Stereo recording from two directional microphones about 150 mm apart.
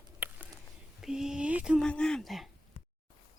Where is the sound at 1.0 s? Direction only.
5° right (ahead or behind).